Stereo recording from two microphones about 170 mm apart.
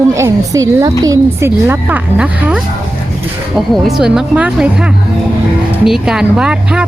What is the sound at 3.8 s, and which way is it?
A woman's voice, 5° right (ahead or behind).